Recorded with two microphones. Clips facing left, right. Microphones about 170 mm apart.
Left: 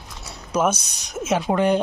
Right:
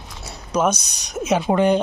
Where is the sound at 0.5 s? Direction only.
5° left (ahead or behind).